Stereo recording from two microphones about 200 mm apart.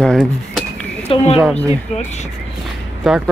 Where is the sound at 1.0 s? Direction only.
30° left (ahead or behind).